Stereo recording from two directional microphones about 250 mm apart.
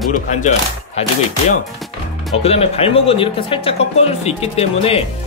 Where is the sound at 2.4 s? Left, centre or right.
Left.